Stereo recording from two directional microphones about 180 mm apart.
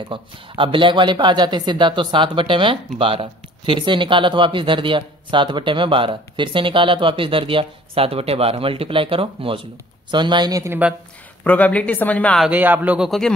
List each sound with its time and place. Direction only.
0.1 s speech: 30° right (ahead or behind); by 11.0 s 10° right (ahead or behind)
11.4 s speech: 10° left (ahead or behind)
12.4 s a man's voice: 10° right (ahead or behind)